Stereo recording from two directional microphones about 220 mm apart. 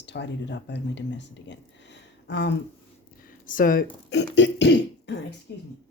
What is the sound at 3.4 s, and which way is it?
Speech, 40° left (ahead or behind).